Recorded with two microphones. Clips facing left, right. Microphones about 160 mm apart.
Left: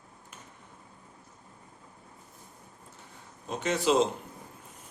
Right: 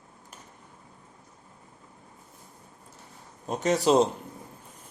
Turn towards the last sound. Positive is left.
turn(degrees=-40)  # may be behind; listen again after turning